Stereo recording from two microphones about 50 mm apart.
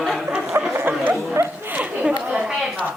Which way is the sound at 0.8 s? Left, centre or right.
Right.